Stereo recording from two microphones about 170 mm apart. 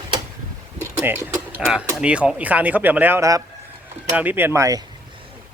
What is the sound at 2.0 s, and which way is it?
Speech, 5° right (ahead or behind).